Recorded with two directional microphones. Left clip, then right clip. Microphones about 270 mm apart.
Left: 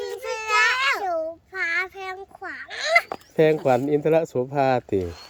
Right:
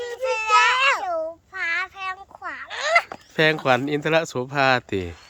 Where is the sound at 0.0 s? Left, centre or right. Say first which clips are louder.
Right 4 dB; centre.